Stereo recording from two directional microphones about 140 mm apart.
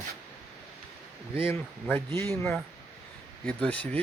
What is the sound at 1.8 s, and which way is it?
Speech, 15° left (ahead or behind).